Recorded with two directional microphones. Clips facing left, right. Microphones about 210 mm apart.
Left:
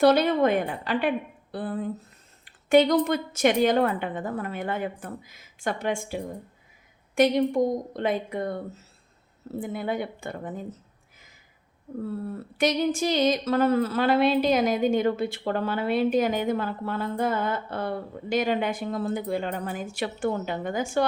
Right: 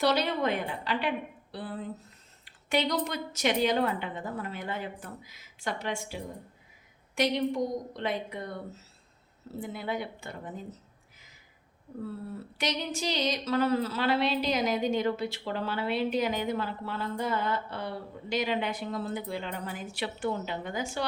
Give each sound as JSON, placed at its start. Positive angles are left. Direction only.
{"t": 0.0, "sound": "speech", "side_deg": 50}
{"t": 12.5, "sound": "speech", "side_deg": 50}